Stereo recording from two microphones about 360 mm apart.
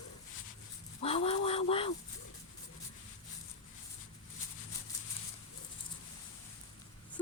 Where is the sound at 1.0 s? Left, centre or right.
Centre.